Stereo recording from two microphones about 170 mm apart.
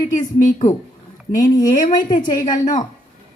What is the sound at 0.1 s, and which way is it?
Speech, 50° left (ahead or behind).